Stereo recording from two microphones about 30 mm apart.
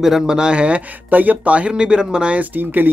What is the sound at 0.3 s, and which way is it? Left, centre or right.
Speech, right.